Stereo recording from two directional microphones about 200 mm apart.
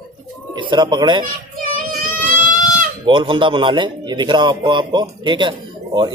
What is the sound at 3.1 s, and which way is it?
A man's voice, 25° right (ahead or behind).